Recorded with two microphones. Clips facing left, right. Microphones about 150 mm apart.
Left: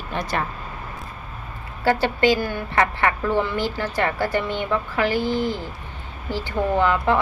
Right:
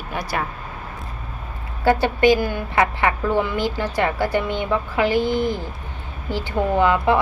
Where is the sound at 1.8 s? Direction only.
15° right (ahead or behind).